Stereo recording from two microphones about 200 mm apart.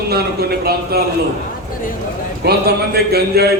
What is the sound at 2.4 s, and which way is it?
A man's voice, 50° right (ahead or behind).